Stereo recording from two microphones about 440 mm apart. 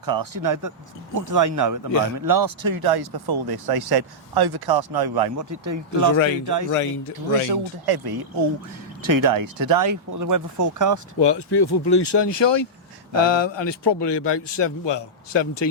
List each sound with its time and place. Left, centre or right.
0.0 s speech: right
1.9 s speech: left
2.1 s speech: right
7.5 s speech: right
11.2 s speech: left